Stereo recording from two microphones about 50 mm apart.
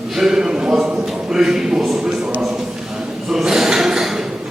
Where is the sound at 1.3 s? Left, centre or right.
Centre.